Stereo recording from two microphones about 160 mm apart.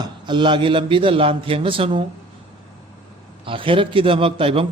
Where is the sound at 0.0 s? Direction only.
30° right (ahead or behind).